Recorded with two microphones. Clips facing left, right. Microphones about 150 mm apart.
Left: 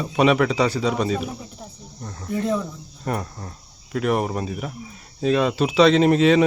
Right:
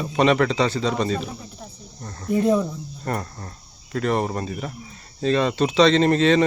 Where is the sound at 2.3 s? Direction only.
15° right (ahead or behind).